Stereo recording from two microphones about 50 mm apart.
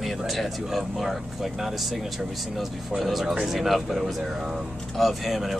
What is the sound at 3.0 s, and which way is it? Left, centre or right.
Speech, centre.